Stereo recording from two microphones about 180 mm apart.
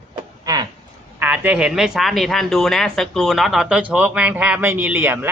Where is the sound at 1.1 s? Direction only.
10° right (ahead or behind).